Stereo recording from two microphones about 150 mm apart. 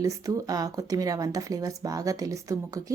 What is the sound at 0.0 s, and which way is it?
A woman's voice, 25° right (ahead or behind).